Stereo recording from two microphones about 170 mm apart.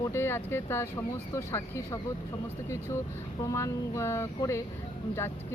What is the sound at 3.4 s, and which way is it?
Speech, 20° left (ahead or behind).